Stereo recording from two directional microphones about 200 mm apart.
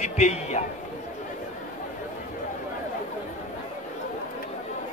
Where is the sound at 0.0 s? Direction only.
35° left (ahead or behind).